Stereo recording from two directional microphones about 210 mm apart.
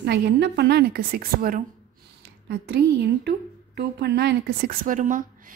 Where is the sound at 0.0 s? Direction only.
50° right (ahead or behind).